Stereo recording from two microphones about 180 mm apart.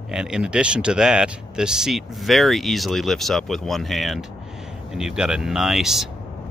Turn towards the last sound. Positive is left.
turn(degrees=0)  # may be behind; listen again after turning